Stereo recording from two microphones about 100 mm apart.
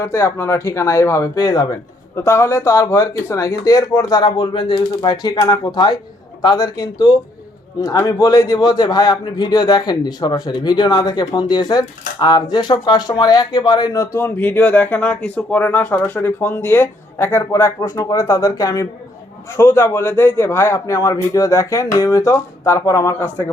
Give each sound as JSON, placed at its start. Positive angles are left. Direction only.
{"t": 0.0, "sound": "speech", "side_deg": 30}
{"t": 2.2, "sound": "a man's voice", "side_deg": 25}
{"t": 14.3, "sound": "speech", "side_deg": 20}